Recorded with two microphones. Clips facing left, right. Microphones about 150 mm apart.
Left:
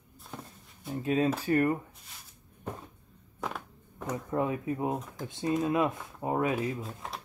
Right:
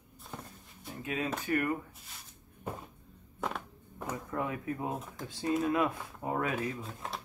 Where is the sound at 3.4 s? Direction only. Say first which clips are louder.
Even; 5° right (ahead or behind).